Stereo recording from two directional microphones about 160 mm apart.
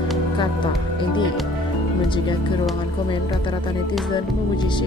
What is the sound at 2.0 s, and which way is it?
A woman's voice, 30° left (ahead or behind).